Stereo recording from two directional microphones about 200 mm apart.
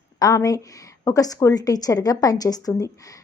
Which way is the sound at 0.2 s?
20° left (ahead or behind).